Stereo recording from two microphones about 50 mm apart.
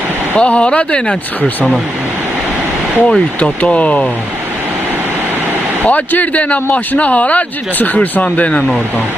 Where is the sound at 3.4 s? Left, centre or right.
Left.